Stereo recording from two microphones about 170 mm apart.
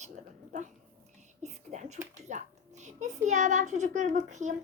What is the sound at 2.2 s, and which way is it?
A child's voice, 45° right (ahead or behind).